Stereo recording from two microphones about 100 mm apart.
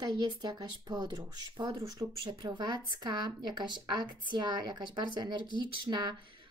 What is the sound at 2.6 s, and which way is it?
Speech, 45° right (ahead or behind).